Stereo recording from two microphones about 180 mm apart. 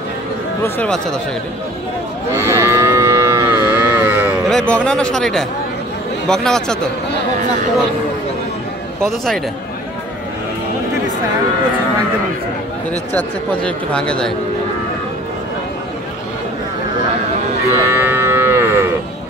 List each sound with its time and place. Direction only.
0.7 s speech: 5° left (ahead or behind)
2.3 s moo: 15° right (ahead or behind)
4.5 s speech: 5° left (ahead or behind)
9.0 s speech: centre (ahead or behind)
13.1 s speech: 5° left (ahead or behind)
17.8 s moo: 15° right (ahead or behind)